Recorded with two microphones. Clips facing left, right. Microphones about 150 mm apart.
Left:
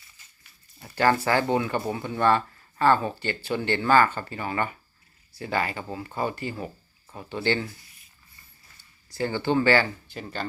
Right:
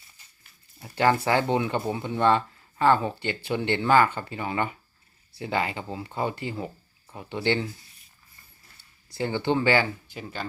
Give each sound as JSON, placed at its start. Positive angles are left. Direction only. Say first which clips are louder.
{"t": 0.8, "sound": "speech", "louder": "even", "side_deg": -15}
{"t": 9.1, "sound": "speech", "louder": "left 1 dB", "side_deg": -20}